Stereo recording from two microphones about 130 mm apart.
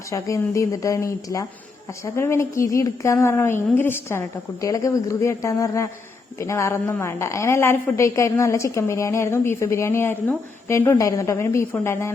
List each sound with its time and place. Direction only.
0.1 s a woman's voice: 25° left (ahead or behind)